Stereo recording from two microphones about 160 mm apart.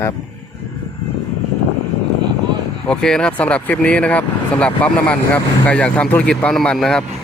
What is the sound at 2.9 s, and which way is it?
Speech, 5° left (ahead or behind).